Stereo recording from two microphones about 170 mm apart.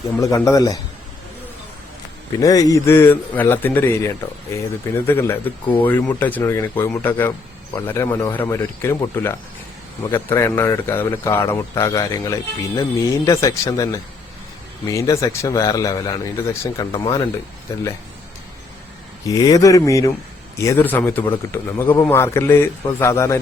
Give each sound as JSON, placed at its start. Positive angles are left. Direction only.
{"t": 0.2, "sound": "a man's voice", "side_deg": 20}
{"t": 2.4, "sound": "a man's voice", "side_deg": 20}
{"t": 19.3, "sound": "a man's voice", "side_deg": 20}